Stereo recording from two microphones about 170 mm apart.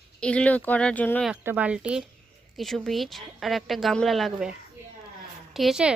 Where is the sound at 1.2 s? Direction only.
10° right (ahead or behind).